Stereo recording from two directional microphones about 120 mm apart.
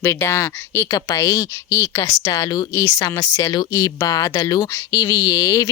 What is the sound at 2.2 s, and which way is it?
Speech, 30° left (ahead or behind).